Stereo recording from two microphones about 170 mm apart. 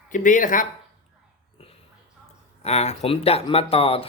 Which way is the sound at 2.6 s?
40° left (ahead or behind).